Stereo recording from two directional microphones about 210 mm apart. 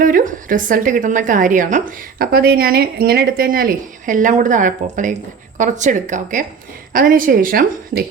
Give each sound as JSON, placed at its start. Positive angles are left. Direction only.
{"t": 0.0, "sound": "a woman's voice", "side_deg": -40}